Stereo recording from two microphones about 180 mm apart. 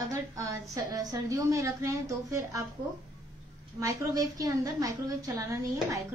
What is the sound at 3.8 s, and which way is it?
A woman's voice, 20° right (ahead or behind).